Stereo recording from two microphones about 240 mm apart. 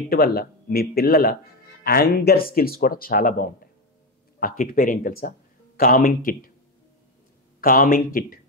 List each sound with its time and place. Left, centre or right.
0.1 s speech: left
7.6 s speech: left